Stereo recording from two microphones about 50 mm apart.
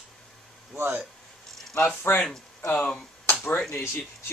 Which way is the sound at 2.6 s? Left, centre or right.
Left.